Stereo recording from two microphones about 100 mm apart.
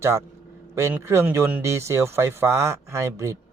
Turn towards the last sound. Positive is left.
turn(degrees=-30)  # may be behind; listen again after turning